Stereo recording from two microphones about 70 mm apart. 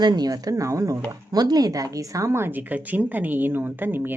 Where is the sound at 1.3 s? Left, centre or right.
Right.